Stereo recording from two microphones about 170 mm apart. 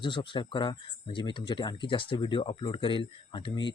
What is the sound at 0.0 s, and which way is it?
Speech, 30° left (ahead or behind).